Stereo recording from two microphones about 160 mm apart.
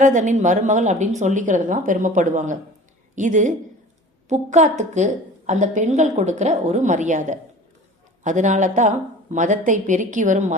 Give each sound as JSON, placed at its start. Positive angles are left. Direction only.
{"t": 0.0, "sound": "a woman's voice", "side_deg": -50}